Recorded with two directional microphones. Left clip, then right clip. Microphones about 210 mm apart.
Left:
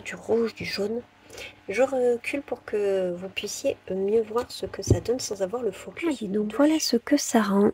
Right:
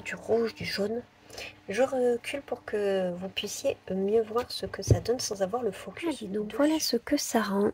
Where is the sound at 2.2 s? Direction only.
20° left (ahead or behind).